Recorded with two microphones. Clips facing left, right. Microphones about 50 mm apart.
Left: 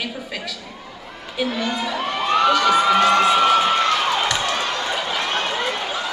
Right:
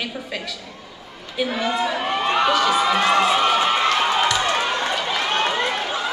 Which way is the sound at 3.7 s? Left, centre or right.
Centre.